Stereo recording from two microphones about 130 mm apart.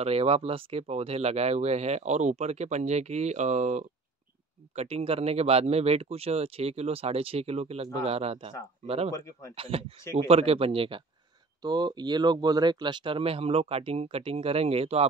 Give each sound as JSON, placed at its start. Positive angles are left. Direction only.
{"t": 0.0, "sound": "speech", "side_deg": -50}
{"t": 4.7, "sound": "speech", "side_deg": -50}
{"t": 9.1, "sound": "speech", "side_deg": 25}
{"t": 9.6, "sound": "speech", "side_deg": -50}
{"t": 11.6, "sound": "speech", "side_deg": -35}